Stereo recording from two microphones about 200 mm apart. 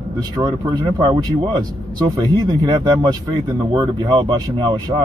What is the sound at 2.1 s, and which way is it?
A man's voice, 20° right (ahead or behind).